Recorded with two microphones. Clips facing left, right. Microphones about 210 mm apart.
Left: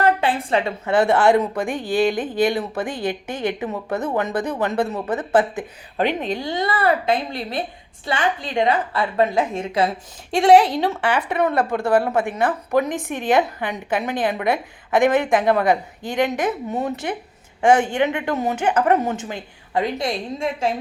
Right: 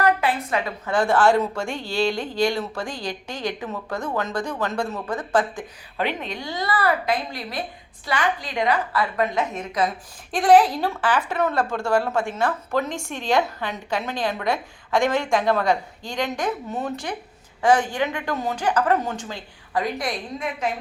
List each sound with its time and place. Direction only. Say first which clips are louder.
0.0 s a woman's voice: left 2 dB; 30° left (ahead or behind)